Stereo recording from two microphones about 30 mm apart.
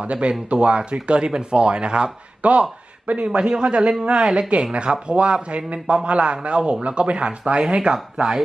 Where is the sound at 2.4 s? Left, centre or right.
Right.